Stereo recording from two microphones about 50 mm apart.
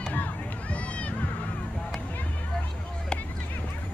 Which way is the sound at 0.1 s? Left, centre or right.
Left.